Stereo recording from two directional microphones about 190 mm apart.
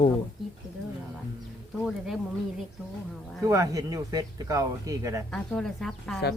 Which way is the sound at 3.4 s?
15° right (ahead or behind).